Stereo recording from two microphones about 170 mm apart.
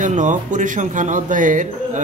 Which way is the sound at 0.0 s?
50° right (ahead or behind).